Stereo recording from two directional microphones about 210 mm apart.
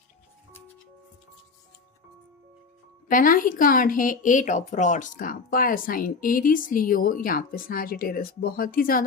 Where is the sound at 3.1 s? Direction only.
40° left (ahead or behind).